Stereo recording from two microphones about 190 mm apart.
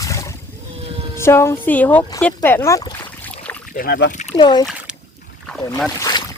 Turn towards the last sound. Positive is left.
turn(degrees=20)  # may be behind; listen again after turning